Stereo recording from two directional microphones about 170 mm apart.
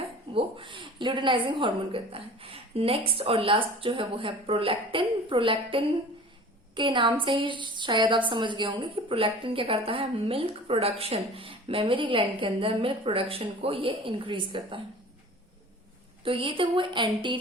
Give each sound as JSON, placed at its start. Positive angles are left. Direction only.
{"t": 0.3, "sound": "a woman's voice", "side_deg": -30}
{"t": 16.2, "sound": "a woman's voice", "side_deg": -30}